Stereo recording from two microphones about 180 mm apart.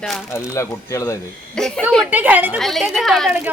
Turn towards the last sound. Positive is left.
turn(degrees=0)  # may be behind; listen again after turning